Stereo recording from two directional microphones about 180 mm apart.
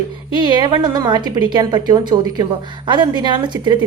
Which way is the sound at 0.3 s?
25° right (ahead or behind).